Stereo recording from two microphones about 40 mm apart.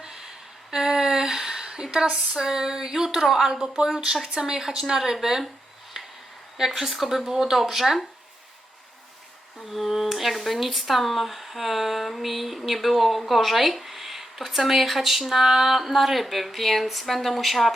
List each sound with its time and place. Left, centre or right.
0.0 s a sound: centre
1.9 s speech: right
2.3 s speech: centre
6.6 s speech: centre
9.6 s speech: centre